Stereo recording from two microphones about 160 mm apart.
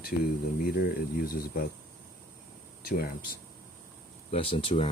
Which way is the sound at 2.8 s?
70° left (ahead or behind).